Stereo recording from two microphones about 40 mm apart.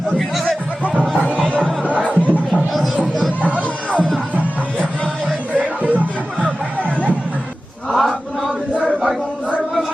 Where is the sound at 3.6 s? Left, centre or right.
Left.